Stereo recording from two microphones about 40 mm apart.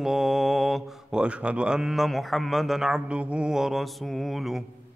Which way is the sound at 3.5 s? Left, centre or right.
Centre.